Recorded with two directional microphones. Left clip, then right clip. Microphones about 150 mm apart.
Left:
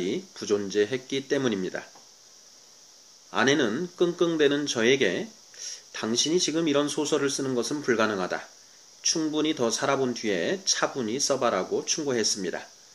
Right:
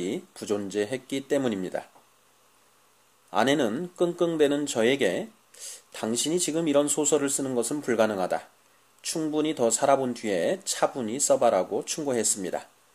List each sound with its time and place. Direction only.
0.0 s speech: 50° right (ahead or behind)
3.3 s speech: 55° right (ahead or behind)